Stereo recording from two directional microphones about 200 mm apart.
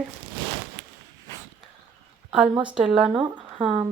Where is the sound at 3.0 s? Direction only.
25° right (ahead or behind).